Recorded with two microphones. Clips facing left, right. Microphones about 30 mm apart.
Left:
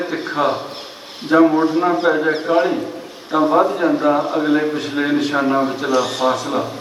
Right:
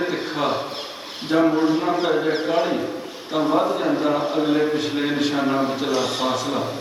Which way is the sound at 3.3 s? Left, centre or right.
Centre.